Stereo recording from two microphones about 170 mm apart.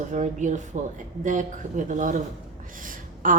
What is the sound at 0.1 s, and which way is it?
A woman's voice, 45° right (ahead or behind).